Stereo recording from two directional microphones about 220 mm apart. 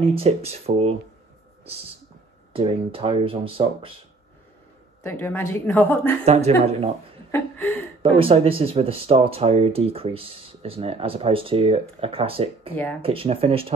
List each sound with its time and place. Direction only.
0.0 s speech: 25° right (ahead or behind)
2.5 s speech: 25° right (ahead or behind)
5.0 s speech: 10° left (ahead or behind)
6.2 s speech: 30° right (ahead or behind)
7.2 s speech: 10° left (ahead or behind)
8.0 s speech: 25° right (ahead or behind)
12.7 s speech: 10° left (ahead or behind)
13.0 s speech: 25° right (ahead or behind)